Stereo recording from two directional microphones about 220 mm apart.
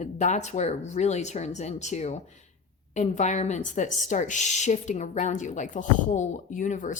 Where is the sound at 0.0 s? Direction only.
30° left (ahead or behind).